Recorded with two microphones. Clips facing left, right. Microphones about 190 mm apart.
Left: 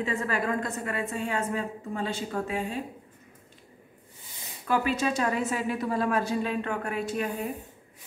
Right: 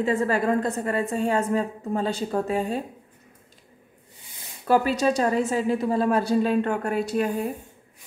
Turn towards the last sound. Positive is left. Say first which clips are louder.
# right 6 dB
turn(degrees=-40)  # may be behind; listen again after turning